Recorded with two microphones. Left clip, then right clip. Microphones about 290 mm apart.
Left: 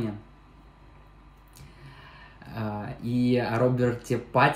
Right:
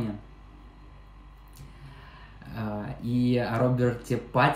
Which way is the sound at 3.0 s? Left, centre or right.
Right.